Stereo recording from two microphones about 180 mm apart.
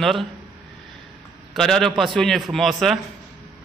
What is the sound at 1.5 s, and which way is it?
A man's voice, centre (ahead or behind).